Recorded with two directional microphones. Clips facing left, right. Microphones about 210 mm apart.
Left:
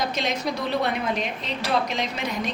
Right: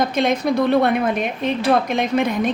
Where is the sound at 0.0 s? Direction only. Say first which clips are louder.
Right 8 dB; 55° right (ahead or behind).